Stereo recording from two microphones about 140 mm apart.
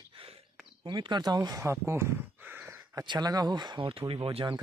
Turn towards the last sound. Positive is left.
turn(degrees=-35)  # may be behind; listen again after turning